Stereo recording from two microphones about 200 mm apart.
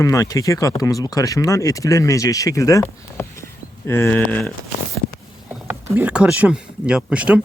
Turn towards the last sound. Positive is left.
turn(degrees=-5)  # may be behind; listen again after turning